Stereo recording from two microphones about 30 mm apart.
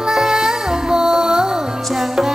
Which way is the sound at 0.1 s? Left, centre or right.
Centre.